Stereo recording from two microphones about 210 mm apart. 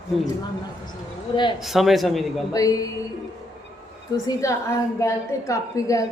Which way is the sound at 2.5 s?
15° left (ahead or behind).